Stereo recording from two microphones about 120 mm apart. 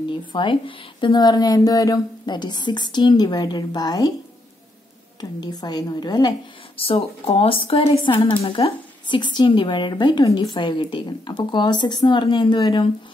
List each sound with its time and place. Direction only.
0.1 s speech: 45° left (ahead or behind)
5.4 s speech: 35° left (ahead or behind)
6.8 s speech: 50° left (ahead or behind)